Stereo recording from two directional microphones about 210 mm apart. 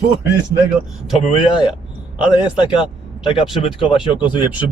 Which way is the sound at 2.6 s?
25° left (ahead or behind).